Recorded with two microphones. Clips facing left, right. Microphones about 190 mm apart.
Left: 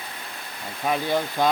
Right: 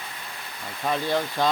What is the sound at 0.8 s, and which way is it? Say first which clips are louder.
Speech: left 1 dB; 10° left (ahead or behind).